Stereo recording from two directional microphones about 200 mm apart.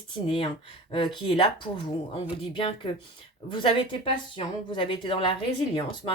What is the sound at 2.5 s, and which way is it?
Speech, 25° left (ahead or behind).